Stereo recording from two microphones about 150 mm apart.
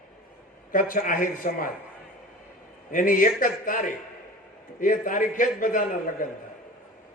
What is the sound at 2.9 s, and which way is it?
A man's voice, 65° left (ahead or behind).